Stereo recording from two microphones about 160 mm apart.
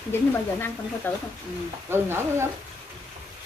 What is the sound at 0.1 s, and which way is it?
A woman's voice, 15° left (ahead or behind).